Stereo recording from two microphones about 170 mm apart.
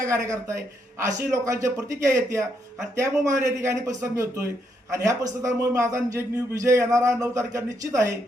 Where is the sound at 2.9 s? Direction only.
15° right (ahead or behind).